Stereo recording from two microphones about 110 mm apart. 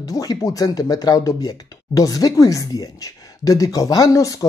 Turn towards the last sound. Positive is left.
turn(degrees=30)  # may be behind; listen again after turning